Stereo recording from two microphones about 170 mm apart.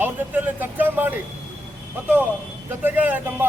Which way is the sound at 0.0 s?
10° right (ahead or behind).